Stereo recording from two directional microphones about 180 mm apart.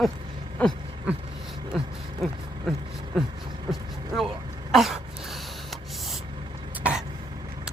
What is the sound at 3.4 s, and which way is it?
Vehicle, 25° right (ahead or behind).